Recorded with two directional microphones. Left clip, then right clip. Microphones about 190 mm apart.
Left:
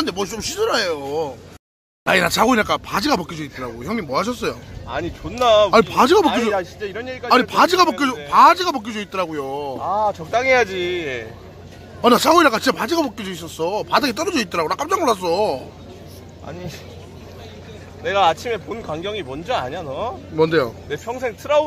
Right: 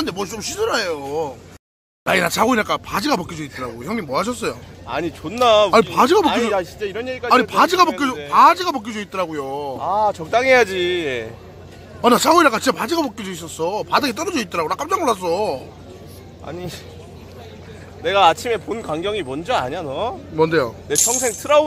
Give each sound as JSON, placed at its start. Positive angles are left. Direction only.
{"t": 0.0, "sound": "speech", "side_deg": 0}
{"t": 2.0, "sound": "speech", "side_deg": 5}
{"t": 4.8, "sound": "speech", "side_deg": -55}
{"t": 5.7, "sound": "speech", "side_deg": 0}
{"t": 6.5, "sound": "speech", "side_deg": -60}
{"t": 7.2, "sound": "speech", "side_deg": 0}
{"t": 9.8, "sound": "speech", "side_deg": -55}
{"t": 12.0, "sound": "speech", "side_deg": 0}
{"t": 18.0, "sound": "speech", "side_deg": -65}
{"t": 20.3, "sound": "speech", "side_deg": 0}
{"t": 20.9, "sound": "speech", "side_deg": -60}